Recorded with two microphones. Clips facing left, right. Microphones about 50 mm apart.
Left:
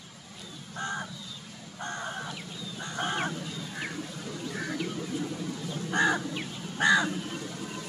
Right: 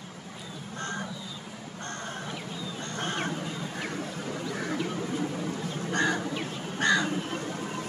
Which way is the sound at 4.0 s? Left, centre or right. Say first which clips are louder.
Right 3 dB; right.